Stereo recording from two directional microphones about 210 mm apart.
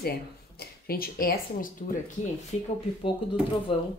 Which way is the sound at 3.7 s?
25° left (ahead or behind).